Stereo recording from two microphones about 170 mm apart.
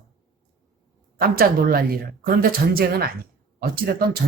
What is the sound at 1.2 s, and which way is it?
Speech, 60° right (ahead or behind).